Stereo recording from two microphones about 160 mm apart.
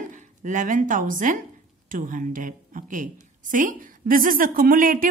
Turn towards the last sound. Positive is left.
turn(degrees=-60)  # may be behind; listen again after turning